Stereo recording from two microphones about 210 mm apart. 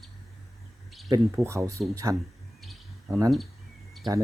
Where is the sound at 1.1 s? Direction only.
15° right (ahead or behind).